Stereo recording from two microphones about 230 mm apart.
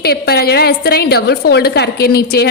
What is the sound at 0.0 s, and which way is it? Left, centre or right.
A woman's voice, left.